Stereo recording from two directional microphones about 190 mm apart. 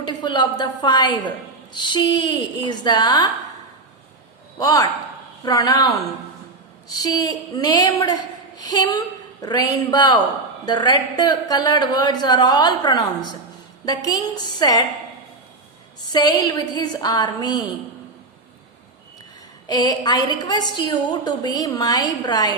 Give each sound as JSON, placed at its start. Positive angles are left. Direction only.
{"t": 0.0, "sound": "a woman's voice", "side_deg": 25}
{"t": 4.6, "sound": "a woman's voice", "side_deg": 20}
{"t": 16.1, "sound": "a woman's voice", "side_deg": 20}
{"t": 19.6, "sound": "a woman's voice", "side_deg": 20}